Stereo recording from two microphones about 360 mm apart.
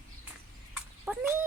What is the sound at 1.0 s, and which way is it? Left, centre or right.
Speech, centre.